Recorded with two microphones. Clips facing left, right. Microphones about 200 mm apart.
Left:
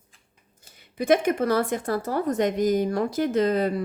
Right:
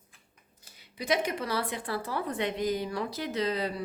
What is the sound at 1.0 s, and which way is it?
Speech, 50° left (ahead or behind).